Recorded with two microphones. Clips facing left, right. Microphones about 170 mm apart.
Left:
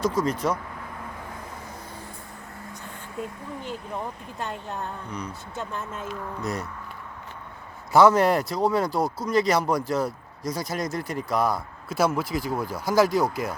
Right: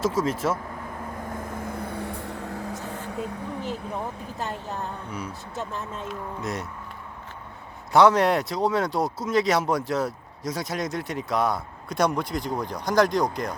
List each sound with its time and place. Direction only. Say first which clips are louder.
0.0 s speech: even; centre (ahead or behind)
1.4 s vehicle: right 7 dB; 50° right (ahead or behind); by 3.2 s 90° right
4.4 s speech: even; centre (ahead or behind)
7.9 s speech: left 1 dB; centre (ahead or behind)